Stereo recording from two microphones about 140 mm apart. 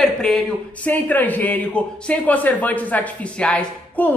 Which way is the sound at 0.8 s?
10° left (ahead or behind).